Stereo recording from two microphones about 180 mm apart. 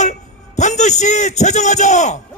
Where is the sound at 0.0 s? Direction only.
40° left (ahead or behind).